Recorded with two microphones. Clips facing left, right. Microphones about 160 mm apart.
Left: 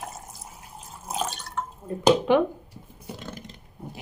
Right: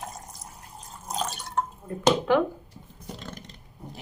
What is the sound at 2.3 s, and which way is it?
Speech, 20° left (ahead or behind).